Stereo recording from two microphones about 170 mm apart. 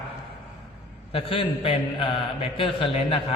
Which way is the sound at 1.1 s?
30° left (ahead or behind).